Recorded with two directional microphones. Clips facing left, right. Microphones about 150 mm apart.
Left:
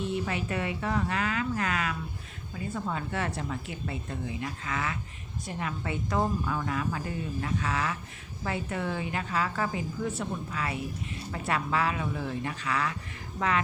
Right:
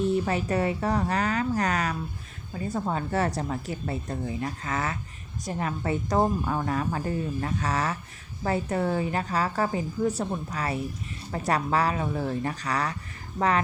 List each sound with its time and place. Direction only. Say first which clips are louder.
0.0 s a woman's voice: right 6 dB; 40° right (ahead or behind)